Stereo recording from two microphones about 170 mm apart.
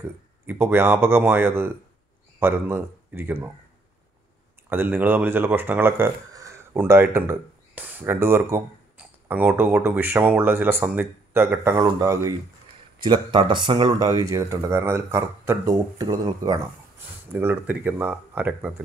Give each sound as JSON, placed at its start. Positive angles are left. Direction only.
{"t": 0.5, "sound": "speech", "side_deg": -10}
{"t": 4.6, "sound": "speech", "side_deg": -10}